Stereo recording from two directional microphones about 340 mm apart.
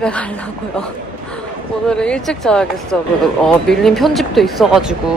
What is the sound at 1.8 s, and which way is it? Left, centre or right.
Speech, centre.